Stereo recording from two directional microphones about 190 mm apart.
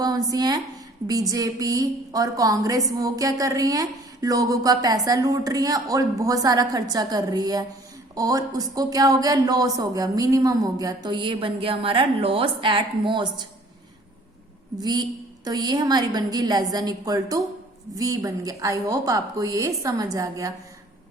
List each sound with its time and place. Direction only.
0.0 s a woman's voice: 20° right (ahead or behind)
14.8 s a woman's voice: 20° right (ahead or behind)